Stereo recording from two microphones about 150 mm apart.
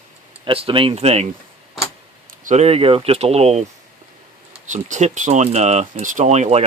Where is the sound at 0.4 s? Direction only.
35° right (ahead or behind).